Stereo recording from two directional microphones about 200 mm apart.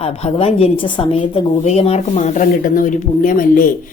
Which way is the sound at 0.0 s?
30° left (ahead or behind).